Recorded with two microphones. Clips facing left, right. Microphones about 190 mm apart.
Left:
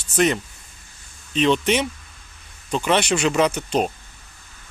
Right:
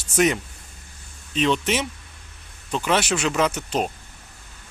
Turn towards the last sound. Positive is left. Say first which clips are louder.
# left 3 dB
turn(degrees=-5)  # may be behind; listen again after turning